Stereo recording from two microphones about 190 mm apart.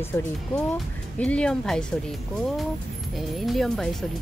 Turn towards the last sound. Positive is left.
turn(degrees=0)  # may be behind; listen again after turning